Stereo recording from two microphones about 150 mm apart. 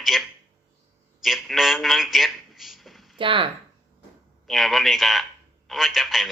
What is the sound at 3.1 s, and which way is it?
Speech, 35° right (ahead or behind).